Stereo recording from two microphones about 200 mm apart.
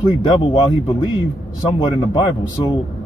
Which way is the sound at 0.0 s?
20° left (ahead or behind).